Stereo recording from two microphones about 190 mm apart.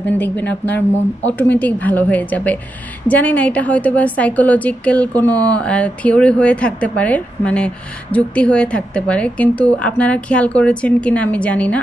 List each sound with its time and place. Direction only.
0.0 s a woman's voice: 10° left (ahead or behind)
5.3 s speech: 20° right (ahead or behind)
5.6 s a woman's voice: 5° left (ahead or behind)